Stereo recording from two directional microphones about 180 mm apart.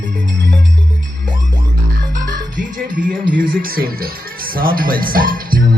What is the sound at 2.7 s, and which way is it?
Speech, 50° right (ahead or behind).